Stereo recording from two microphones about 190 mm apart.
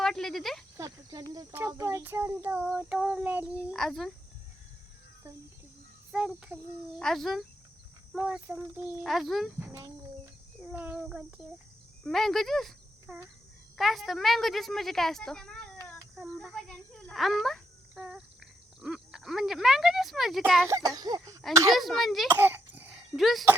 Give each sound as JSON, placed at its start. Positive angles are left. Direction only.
{"t": 0.0, "sound": "a sound", "side_deg": 0}
{"t": 0.8, "sound": "a child's voice", "side_deg": -20}
{"t": 6.1, "sound": "a woman's voice", "side_deg": -5}
{"t": 9.6, "sound": "a child's voice", "side_deg": -15}
{"t": 20.7, "sound": "speech", "side_deg": -20}
{"t": 21.7, "sound": "a woman's voice", "side_deg": 0}
{"t": 22.3, "sound": "cough", "side_deg": -10}